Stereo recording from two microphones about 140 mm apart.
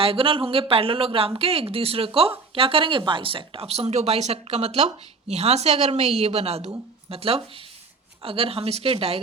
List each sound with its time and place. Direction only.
0.0 s speech: 40° right (ahead or behind)